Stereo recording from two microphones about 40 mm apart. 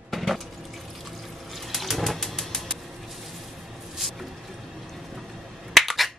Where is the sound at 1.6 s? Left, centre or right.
Centre.